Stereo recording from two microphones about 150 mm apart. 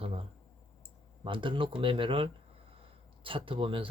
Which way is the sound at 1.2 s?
35° right (ahead or behind).